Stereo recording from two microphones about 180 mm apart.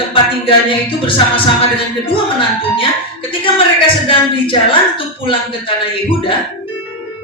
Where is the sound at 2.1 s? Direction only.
30° left (ahead or behind).